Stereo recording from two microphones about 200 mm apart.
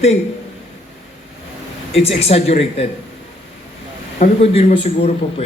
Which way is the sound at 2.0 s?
30° left (ahead or behind).